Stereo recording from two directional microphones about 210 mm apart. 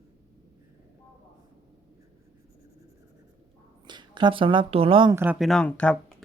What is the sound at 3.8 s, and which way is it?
Speech, 20° right (ahead or behind).